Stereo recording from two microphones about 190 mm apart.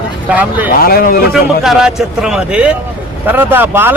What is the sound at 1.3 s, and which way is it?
A man's voice, centre (ahead or behind).